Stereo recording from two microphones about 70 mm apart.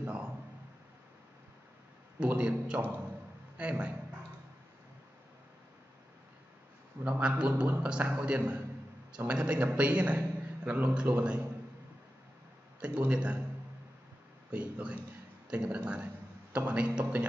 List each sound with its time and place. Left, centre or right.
0.0 s speech: centre
2.1 s a man's voice: centre
7.0 s a man's voice: right
12.8 s a man's voice: centre
14.5 s a man's voice: centre